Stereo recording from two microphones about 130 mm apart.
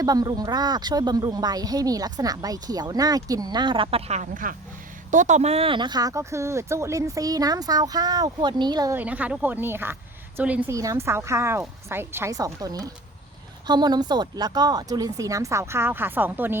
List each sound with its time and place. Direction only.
0.0 s speech: 30° right (ahead or behind)
4.1 s speech: 80° right
5.1 s speech: 65° right (ahead or behind); by 8.9 s 35° right (ahead or behind)
8.9 s speech: 15° right (ahead or behind)
10.7 s speech: 25° right (ahead or behind)